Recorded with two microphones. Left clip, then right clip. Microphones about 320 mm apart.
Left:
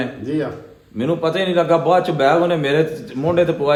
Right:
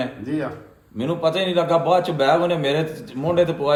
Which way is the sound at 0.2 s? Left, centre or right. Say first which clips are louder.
Left 4 dB; centre.